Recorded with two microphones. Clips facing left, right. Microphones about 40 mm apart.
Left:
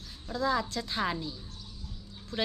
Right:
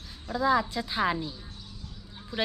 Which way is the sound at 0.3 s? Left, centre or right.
Centre.